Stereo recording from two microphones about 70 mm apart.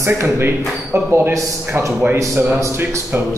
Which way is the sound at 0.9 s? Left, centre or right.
Right.